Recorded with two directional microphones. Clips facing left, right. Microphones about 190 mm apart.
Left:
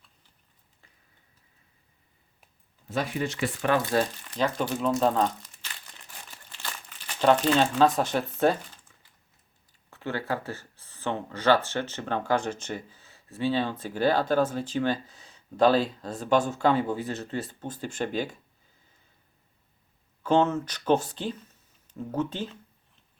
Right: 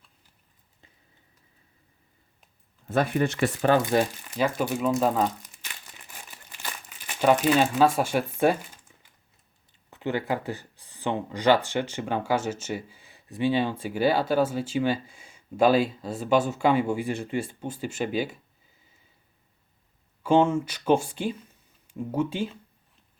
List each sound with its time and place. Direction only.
2.8 s speech: 55° right (ahead or behind)
3.8 s speech: 15° right (ahead or behind)
4.9 s crumpling: 5° right (ahead or behind)
9.9 s speech: 15° right (ahead or behind)
20.2 s speech: 10° right (ahead or behind)